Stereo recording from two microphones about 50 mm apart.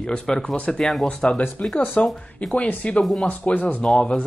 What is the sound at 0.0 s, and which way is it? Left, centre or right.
Speech, centre.